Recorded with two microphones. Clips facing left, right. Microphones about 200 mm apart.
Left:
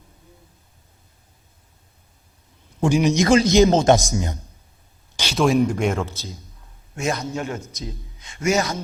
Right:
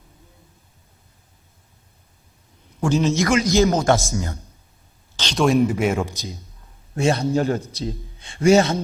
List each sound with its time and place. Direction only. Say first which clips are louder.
2.8 s a man's voice: left 1 dB; 15° left (ahead or behind)
3.2 s speech: left 5 dB; 30° left (ahead or behind)
5.1 s speech: even; 10° left (ahead or behind)
6.0 s a man's voice: right 2 dB; 15° right (ahead or behind)
6.9 s a man's voice: right 6 dB; 30° right (ahead or behind)